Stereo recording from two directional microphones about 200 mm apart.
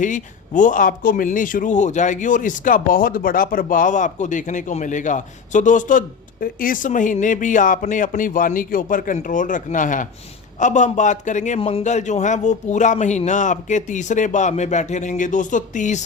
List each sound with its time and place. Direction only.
0.0 s speech: 40° left (ahead or behind)